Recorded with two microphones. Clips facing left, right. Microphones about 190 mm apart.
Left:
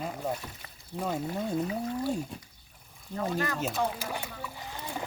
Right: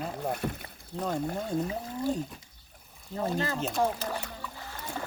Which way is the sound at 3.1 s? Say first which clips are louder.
Right 1 dB; 25° right (ahead or behind).